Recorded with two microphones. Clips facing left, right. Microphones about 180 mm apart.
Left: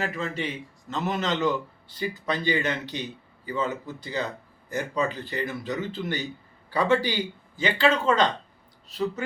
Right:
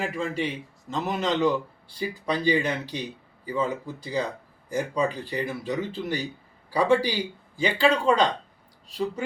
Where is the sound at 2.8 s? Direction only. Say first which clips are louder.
Even; 35° right (ahead or behind).